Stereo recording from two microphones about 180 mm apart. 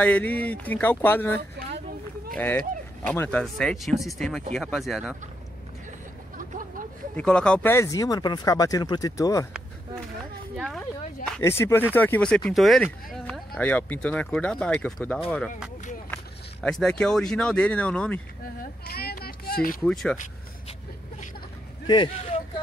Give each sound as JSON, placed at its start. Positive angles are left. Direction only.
{"t": 0.0, "sound": "speech", "side_deg": 10}
{"t": 6.3, "sound": "vehicle", "side_deg": -50}
{"t": 7.2, "sound": "speech", "side_deg": 5}
{"t": 10.5, "sound": "a sound", "side_deg": -5}
{"t": 11.3, "sound": "speech", "side_deg": 15}
{"t": 18.9, "sound": "children playing", "side_deg": 60}
{"t": 19.8, "sound": "speech", "side_deg": 5}
{"t": 21.8, "sound": "speech", "side_deg": 25}